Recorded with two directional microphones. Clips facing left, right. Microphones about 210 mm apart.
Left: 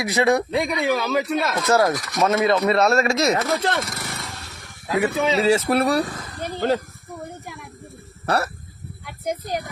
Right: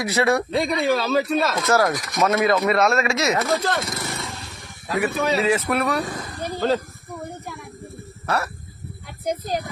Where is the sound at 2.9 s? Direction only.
35° left (ahead or behind).